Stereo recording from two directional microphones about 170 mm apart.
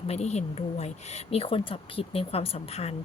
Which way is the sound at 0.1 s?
40° left (ahead or behind).